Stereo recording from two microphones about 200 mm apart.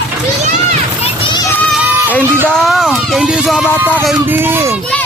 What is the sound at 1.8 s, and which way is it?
Run, 10° right (ahead or behind).